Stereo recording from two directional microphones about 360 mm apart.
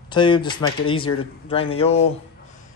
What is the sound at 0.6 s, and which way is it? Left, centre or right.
Speech, left.